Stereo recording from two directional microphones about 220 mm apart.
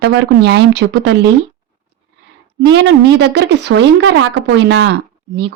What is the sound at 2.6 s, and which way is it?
A woman's voice, 55° right (ahead or behind).